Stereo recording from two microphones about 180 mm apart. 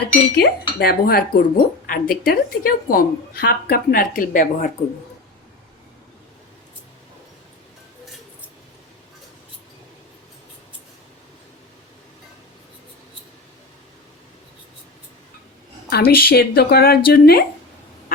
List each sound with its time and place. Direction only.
0.3 s speech: 60° left (ahead or behind)
15.9 s speech: 60° left (ahead or behind)